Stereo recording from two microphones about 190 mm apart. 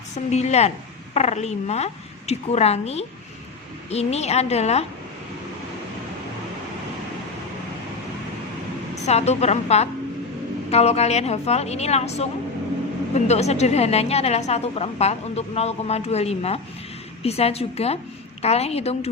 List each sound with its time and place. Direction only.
0.3 s a woman's voice: 35° left (ahead or behind)
9.0 s a woman's voice: 35° left (ahead or behind)